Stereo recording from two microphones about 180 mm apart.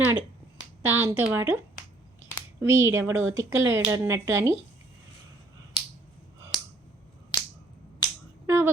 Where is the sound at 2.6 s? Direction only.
15° right (ahead or behind).